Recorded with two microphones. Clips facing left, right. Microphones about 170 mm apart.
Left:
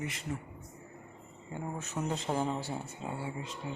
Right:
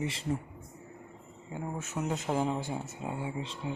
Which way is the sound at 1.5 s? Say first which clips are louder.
Right 1 dB; 5° right (ahead or behind).